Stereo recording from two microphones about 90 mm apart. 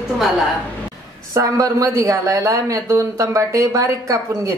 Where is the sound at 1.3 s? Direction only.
40° right (ahead or behind).